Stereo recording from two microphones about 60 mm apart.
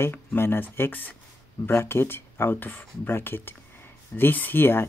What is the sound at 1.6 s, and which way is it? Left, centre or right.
Speech, left.